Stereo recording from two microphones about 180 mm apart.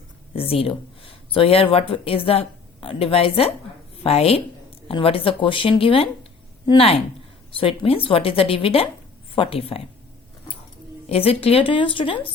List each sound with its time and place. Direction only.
0.3 s a woman's voice: 30° left (ahead or behind)
11.1 s speech: 35° left (ahead or behind)